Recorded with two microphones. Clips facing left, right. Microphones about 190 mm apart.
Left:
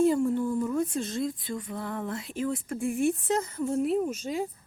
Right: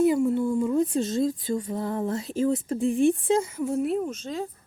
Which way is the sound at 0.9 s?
35° right (ahead or behind).